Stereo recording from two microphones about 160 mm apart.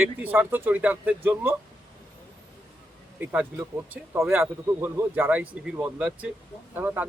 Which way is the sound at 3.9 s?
10° right (ahead or behind).